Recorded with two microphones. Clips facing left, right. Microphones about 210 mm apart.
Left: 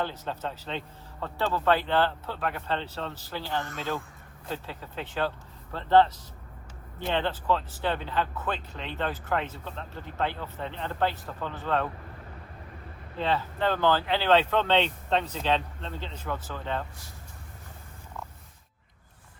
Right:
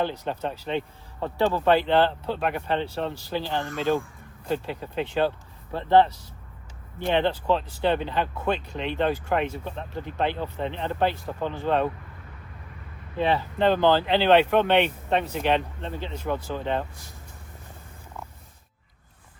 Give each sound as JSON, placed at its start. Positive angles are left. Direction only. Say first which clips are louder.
{"t": 0.0, "sound": "speech", "louder": "right 5 dB", "side_deg": -15}
{"t": 13.1, "sound": "speech", "louder": "right 5 dB", "side_deg": -15}